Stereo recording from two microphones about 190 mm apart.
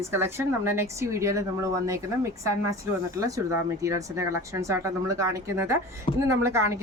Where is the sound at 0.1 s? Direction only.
15° right (ahead or behind).